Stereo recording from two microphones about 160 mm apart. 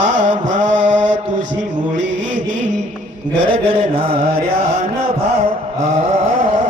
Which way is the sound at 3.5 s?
35° right (ahead or behind).